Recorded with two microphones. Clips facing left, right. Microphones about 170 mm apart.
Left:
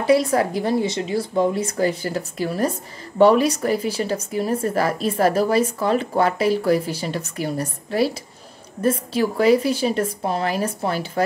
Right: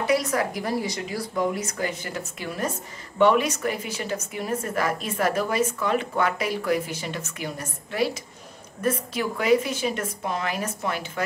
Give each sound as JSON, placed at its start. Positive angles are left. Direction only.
{"t": 0.0, "sound": "a woman's voice", "side_deg": 30}